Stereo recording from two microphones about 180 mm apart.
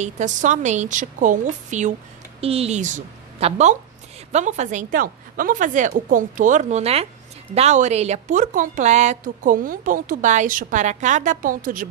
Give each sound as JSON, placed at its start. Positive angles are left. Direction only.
{"t": 0.0, "sound": "a woman's voice", "side_deg": -45}